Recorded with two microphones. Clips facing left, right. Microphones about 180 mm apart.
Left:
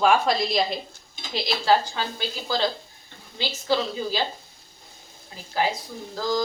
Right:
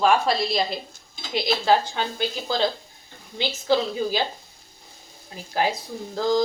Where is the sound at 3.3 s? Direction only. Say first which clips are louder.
Right 3 dB; 20° right (ahead or behind).